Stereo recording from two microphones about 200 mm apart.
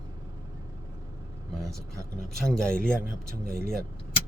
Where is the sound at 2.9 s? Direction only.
45° right (ahead or behind).